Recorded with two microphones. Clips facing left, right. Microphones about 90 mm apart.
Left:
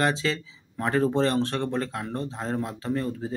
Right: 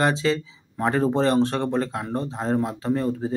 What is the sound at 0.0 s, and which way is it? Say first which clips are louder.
Speech: right 4 dB; 30° right (ahead or behind).